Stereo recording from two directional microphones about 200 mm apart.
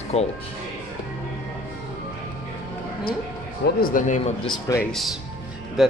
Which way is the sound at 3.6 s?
45° left (ahead or behind).